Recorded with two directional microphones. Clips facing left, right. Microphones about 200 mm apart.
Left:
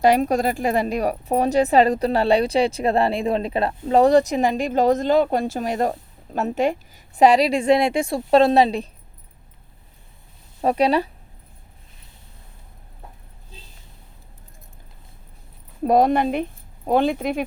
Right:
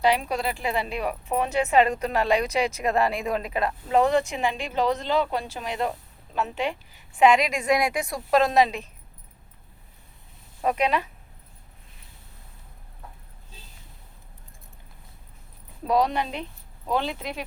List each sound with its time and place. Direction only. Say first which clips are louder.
0.0 s a woman's voice: left 6 dB; 45° left (ahead or behind)
10.6 s a woman's voice: left 6 dB; 35° left (ahead or behind)
15.8 s speech: left 6 dB; 50° left (ahead or behind)